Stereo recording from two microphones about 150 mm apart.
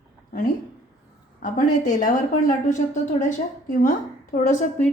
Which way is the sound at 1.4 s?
70° left (ahead or behind).